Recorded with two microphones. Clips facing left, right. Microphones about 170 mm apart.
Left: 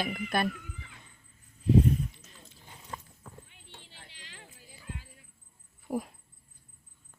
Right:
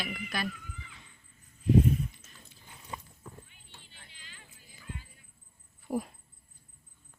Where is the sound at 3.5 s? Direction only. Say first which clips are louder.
Left 4 dB; 85° left.